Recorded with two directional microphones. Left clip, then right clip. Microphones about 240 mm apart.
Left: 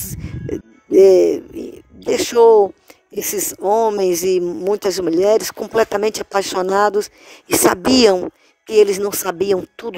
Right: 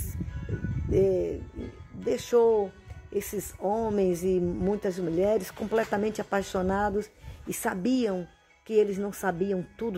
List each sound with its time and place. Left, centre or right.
1.0 s speech: left